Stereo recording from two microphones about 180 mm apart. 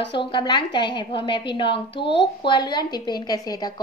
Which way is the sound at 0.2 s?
25° left (ahead or behind).